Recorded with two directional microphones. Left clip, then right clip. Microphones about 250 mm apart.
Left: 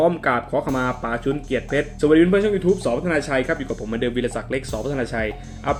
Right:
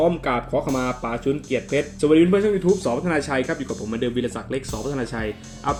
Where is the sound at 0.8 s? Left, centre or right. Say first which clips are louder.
Left 1 dB; centre.